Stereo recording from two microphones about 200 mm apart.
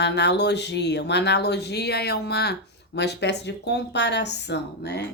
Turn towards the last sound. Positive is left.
turn(degrees=55)  # may be behind; listen again after turning